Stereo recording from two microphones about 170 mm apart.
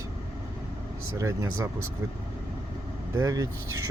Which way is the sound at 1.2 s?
20° right (ahead or behind).